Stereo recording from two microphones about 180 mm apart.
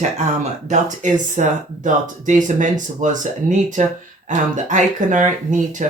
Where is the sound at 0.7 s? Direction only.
45° right (ahead or behind).